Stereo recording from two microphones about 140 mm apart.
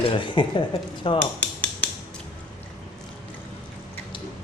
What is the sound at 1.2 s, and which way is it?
Dishes, 10° left (ahead or behind).